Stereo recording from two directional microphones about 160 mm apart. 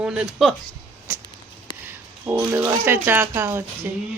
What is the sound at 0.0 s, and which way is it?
Speech, 5° right (ahead or behind).